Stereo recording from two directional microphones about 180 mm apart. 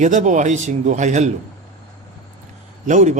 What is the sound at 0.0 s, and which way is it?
A man's voice, 45° right (ahead or behind).